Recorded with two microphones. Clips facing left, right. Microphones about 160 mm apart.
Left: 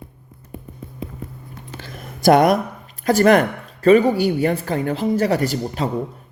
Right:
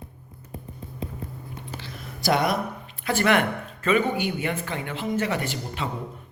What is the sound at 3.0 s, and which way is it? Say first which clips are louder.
Speech: left 8 dB; 40° left (ahead or behind).